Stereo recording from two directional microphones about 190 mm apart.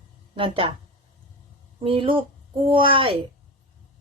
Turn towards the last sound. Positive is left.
turn(degrees=-30)  # may be behind; listen again after turning